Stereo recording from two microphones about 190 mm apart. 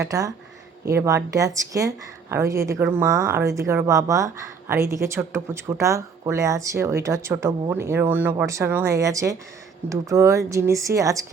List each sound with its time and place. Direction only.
0.0 s speech: 20° right (ahead or behind)